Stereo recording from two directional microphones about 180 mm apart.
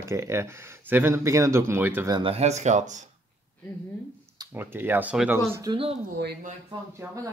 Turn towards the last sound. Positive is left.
turn(degrees=-15)  # may be behind; listen again after turning